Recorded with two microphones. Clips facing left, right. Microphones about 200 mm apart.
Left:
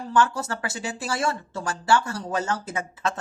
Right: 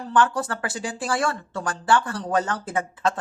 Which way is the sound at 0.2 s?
25° left (ahead or behind).